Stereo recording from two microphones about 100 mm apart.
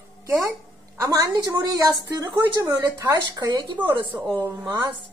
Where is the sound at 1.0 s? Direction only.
35° right (ahead or behind).